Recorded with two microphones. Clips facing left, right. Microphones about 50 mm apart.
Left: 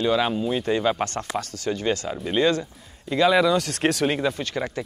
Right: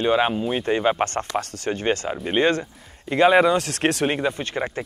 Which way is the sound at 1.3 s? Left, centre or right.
Right.